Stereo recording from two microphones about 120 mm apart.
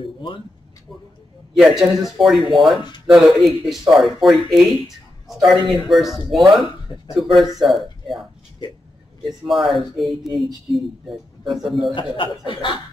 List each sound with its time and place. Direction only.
1.6 s speech: centre (ahead or behind)
11.9 s speech: 45° left (ahead or behind)